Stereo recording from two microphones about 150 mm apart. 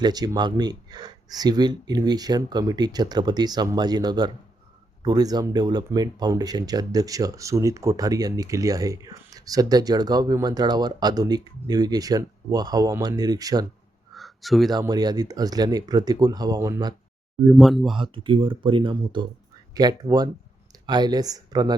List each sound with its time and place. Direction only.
0.0 s speech: 25° right (ahead or behind)
14.1 s a sound: centre (ahead or behind)
14.7 s speech: 25° right (ahead or behind)
17.5 s speech: centre (ahead or behind)
17.9 s speech: 35° right (ahead or behind)